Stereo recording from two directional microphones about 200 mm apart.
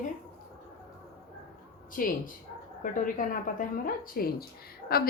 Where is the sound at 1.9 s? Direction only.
45° left (ahead or behind).